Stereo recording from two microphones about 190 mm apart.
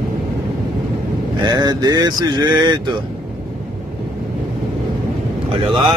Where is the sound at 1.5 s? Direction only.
20° right (ahead or behind).